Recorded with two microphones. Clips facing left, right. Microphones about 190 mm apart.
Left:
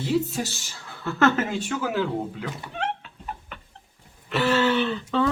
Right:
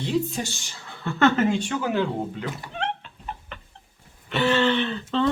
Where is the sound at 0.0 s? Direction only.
5° left (ahead or behind).